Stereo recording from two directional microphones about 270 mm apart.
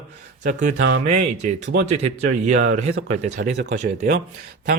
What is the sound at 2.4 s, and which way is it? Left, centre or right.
A man's voice, right.